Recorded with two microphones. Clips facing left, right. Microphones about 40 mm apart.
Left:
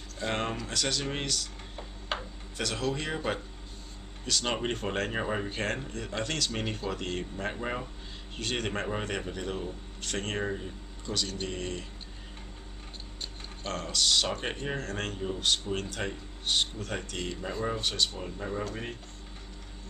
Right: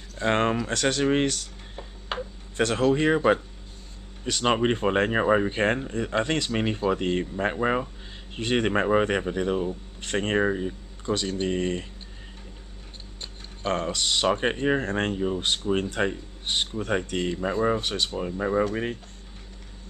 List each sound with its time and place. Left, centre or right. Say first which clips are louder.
0.2 s speech: right 9 dB; right
2.1 s a sound: right 3 dB; centre
2.5 s speech: right 10 dB; right
13.6 s speech: right 5 dB; right